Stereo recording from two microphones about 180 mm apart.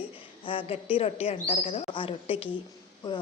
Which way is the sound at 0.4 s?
30° left (ahead or behind).